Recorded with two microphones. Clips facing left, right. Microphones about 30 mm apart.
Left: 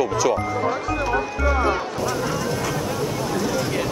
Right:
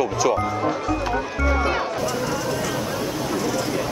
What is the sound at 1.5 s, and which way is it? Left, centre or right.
Music, centre.